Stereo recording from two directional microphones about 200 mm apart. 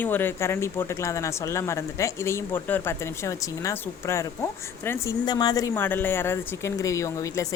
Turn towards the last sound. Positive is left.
turn(degrees=15)  # may be behind; listen again after turning